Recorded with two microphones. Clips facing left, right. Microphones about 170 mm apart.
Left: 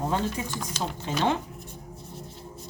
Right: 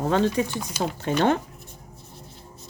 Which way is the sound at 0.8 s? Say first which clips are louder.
Right 5 dB; 60° right (ahead or behind).